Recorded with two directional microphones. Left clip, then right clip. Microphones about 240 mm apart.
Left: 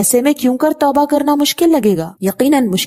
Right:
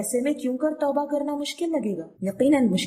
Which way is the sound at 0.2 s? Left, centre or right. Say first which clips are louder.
Left 11 dB; left.